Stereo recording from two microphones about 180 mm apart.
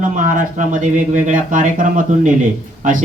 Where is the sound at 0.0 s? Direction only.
45° right (ahead or behind).